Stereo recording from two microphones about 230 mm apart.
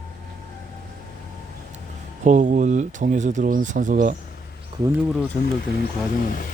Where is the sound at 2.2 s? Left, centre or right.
Right.